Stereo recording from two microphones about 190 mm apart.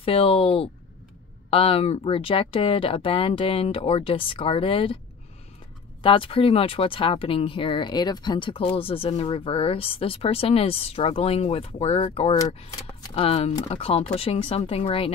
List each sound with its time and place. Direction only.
0.0 s speech: 30° left (ahead or behind)
6.0 s speech: 30° left (ahead or behind)